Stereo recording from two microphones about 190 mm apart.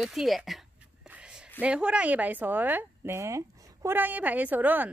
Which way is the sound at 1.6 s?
5° right (ahead or behind).